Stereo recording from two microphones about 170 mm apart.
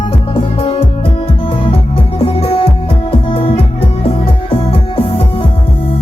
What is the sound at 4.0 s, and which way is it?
Music, 35° left (ahead or behind).